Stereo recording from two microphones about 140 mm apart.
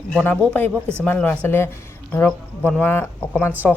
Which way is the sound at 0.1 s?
10° left (ahead or behind).